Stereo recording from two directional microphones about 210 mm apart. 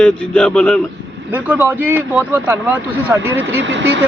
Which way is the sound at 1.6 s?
10° right (ahead or behind).